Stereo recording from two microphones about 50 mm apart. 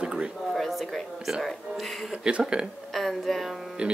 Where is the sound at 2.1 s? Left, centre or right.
Centre.